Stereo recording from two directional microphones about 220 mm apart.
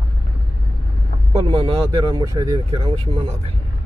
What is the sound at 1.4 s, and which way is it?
Speech, 25° right (ahead or behind).